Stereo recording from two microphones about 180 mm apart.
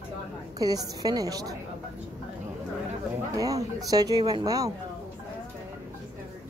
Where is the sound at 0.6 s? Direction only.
20° right (ahead or behind).